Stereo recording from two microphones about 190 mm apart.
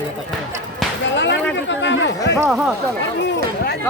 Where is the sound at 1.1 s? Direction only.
70° left (ahead or behind).